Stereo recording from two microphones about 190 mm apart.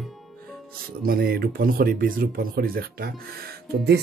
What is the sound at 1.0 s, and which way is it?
Speech, 50° right (ahead or behind).